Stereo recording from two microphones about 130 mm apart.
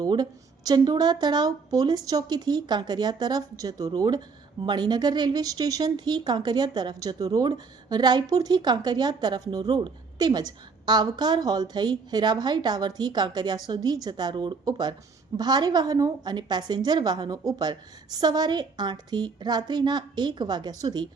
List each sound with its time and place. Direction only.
0.0 s speech: 30° right (ahead or behind)